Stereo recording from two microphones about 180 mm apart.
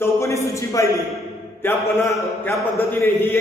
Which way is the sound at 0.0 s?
15° left (ahead or behind).